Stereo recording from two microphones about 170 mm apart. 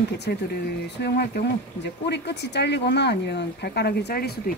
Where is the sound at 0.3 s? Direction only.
65° left (ahead or behind).